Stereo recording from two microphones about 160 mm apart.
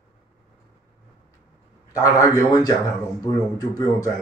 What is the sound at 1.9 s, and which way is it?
A man's voice, 20° left (ahead or behind).